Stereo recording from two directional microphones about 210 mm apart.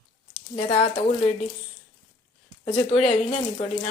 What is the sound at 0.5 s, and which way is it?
Speech, 30° left (ahead or behind).